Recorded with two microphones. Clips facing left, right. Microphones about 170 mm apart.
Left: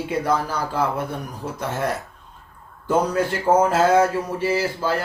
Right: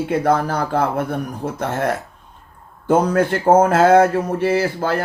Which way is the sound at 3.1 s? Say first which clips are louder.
Right 5 dB; 50° right (ahead or behind).